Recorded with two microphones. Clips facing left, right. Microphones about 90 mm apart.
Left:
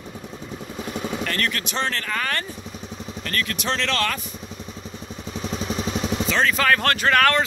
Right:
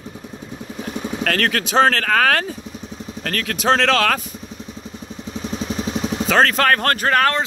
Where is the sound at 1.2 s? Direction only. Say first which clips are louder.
Right 6 dB; 90° right.